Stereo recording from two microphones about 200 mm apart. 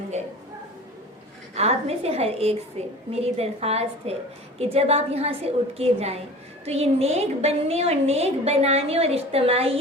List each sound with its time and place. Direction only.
1.5 s a woman's voice: 30° right (ahead or behind)